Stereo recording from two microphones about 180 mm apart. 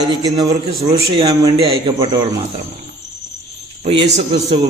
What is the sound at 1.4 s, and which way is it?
Speech, 30° right (ahead or behind).